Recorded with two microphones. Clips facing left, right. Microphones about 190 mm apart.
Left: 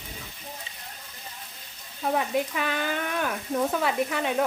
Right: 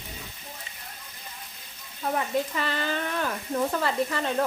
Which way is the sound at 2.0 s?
10° left (ahead or behind).